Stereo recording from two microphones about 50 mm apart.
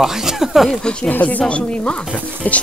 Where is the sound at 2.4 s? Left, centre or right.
Left.